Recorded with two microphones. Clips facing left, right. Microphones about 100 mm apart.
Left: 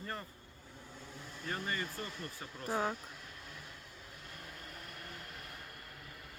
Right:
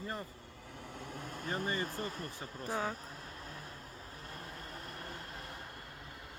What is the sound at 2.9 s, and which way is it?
Vehicle, 35° right (ahead or behind).